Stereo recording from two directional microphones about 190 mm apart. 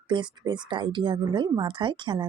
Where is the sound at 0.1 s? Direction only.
25° right (ahead or behind).